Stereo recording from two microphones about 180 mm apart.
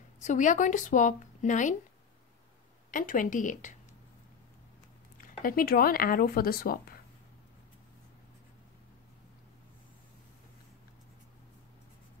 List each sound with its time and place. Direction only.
0.2 s speech: 45° left (ahead or behind)
2.9 s speech: 45° left (ahead or behind)
5.1 s speech: 50° left (ahead or behind)